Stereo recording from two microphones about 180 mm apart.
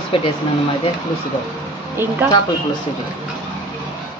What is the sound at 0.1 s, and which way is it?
Speech, 30° left (ahead or behind).